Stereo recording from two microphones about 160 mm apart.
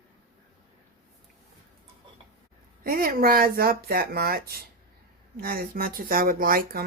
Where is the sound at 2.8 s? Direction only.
65° right (ahead or behind).